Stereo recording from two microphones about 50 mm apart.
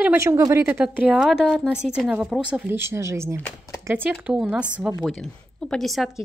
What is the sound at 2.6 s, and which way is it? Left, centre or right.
Speech, right.